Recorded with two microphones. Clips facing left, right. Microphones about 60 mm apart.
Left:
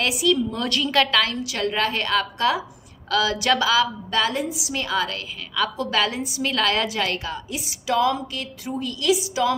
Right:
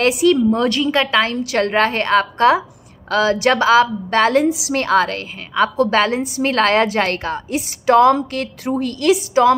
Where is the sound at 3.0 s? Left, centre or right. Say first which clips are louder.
Right 6 dB; right.